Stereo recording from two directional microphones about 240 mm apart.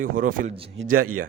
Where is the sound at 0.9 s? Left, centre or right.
Right.